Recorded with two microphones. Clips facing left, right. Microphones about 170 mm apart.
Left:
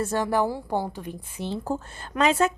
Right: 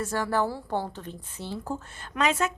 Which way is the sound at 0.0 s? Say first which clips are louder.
Left 3 dB; 20° left (ahead or behind).